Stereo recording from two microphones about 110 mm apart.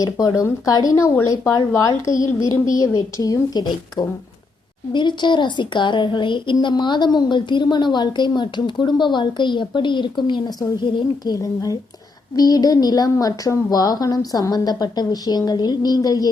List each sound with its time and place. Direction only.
0.0 s a woman's voice: 35° left (ahead or behind)
11.3 s a woman's voice: 35° left (ahead or behind)